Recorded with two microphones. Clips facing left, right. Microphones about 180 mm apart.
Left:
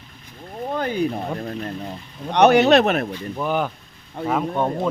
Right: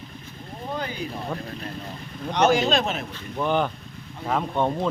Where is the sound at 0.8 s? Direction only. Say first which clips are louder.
Left 11 dB; 50° left (ahead or behind).